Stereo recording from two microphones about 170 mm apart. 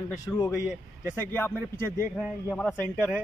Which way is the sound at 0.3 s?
10° left (ahead or behind).